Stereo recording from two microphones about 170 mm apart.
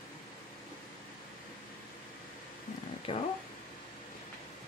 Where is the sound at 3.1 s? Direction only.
30° left (ahead or behind).